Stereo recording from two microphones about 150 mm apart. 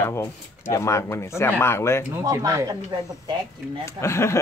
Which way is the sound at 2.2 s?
20° right (ahead or behind).